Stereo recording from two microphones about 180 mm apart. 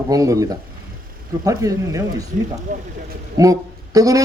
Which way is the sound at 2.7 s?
50° right (ahead or behind).